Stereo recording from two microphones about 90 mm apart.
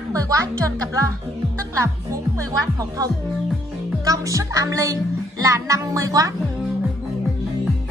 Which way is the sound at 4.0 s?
40° right (ahead or behind).